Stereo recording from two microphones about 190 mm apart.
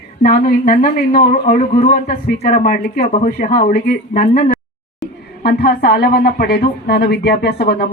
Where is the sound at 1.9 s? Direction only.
55° left (ahead or behind).